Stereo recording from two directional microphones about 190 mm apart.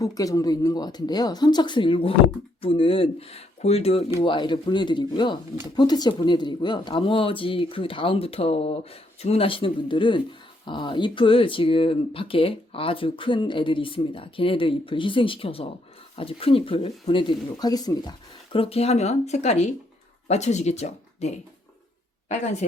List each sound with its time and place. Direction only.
0.0 s speech: 20° left (ahead or behind)
18.5 s speech: 30° left (ahead or behind)